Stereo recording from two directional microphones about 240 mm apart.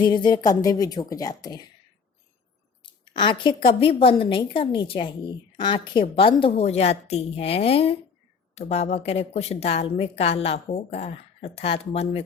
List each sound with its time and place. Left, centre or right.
0.0 s a woman's voice: centre
2.8 s a woman's voice: centre